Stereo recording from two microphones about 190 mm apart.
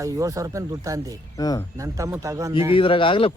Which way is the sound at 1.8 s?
15° right (ahead or behind).